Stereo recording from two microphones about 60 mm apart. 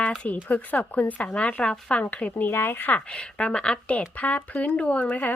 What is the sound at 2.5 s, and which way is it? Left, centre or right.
Speech, left.